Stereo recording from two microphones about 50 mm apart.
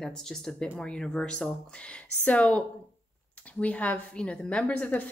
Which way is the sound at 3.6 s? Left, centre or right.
Left.